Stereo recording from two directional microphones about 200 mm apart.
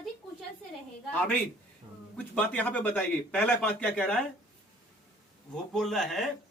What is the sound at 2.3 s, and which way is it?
A man's voice, 5° left (ahead or behind).